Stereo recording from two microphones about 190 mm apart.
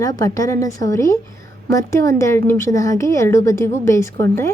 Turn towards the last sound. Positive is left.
turn(degrees=15)  # may be behind; listen again after turning